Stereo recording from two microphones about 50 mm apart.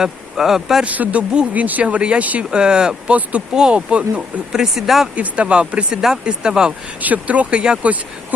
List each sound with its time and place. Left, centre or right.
0.0 s speech: centre
0.9 s speech: right
3.1 s speech: right
3.5 s speech: centre
4.6 s speech: centre
5.1 s speech: right
7.0 s speech: right
7.6 s speech: centre